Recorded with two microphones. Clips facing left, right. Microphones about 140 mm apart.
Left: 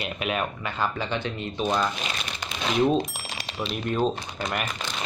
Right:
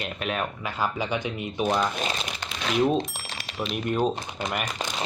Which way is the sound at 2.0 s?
35° right (ahead or behind).